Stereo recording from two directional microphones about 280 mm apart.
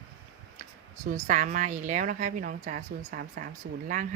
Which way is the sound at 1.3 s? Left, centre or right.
Right.